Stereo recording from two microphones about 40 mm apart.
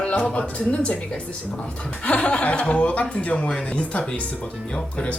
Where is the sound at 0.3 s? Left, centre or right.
Left.